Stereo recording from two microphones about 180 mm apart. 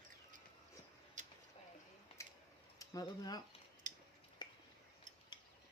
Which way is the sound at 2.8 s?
20° left (ahead or behind).